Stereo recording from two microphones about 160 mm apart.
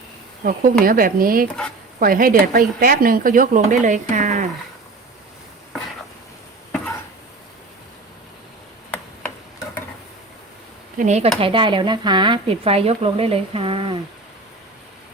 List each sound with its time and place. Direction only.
0.4 s speech: 65° right (ahead or behind)
10.9 s speech: 50° right (ahead or behind)
11.3 s speech: 35° right (ahead or behind)